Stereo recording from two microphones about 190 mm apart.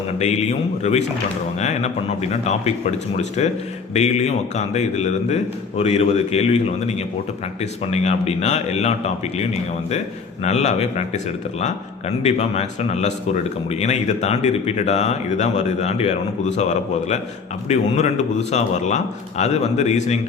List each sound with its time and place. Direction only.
0.2 s a man's voice: 35° left (ahead or behind)
10.4 s a man's voice: 35° left (ahead or behind)